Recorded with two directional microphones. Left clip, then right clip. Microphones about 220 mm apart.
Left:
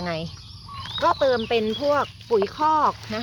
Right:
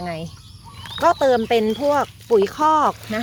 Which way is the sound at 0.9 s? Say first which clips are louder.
Right 4 dB; 35° right (ahead or behind).